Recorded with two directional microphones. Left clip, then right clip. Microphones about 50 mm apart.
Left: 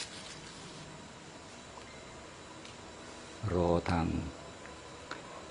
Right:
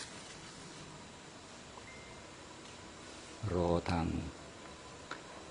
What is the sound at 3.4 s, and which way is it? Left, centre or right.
Speech, centre.